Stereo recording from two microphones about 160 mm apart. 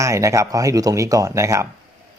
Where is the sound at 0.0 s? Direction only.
20° right (ahead or behind).